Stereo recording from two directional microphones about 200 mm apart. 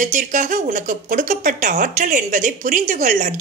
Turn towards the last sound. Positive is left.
turn(degrees=-40)  # may be behind; listen again after turning